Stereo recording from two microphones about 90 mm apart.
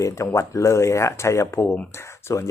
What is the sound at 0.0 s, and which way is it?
Speech, 35° left (ahead or behind).